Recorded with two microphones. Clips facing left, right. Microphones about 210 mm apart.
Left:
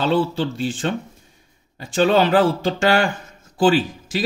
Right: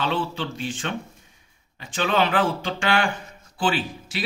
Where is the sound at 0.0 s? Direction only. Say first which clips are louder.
Left 7 dB; 35° left (ahead or behind).